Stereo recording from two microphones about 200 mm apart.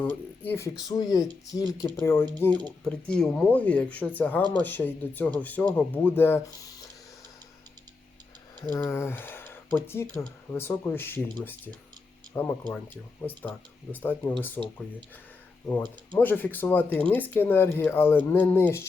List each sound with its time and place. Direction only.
0.0 s speech: 10° left (ahead or behind)
8.7 s speech: 10° left (ahead or behind)
12.3 s speech: 10° left (ahead or behind)
15.6 s speech: 10° left (ahead or behind)